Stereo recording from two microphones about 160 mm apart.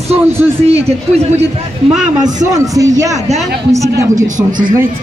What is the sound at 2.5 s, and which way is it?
Speech, 20° right (ahead or behind).